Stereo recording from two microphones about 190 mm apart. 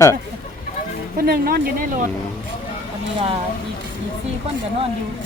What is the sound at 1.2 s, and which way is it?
Speech, 50° right (ahead or behind).